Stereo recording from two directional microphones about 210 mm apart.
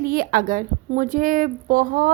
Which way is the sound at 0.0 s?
45° right (ahead or behind).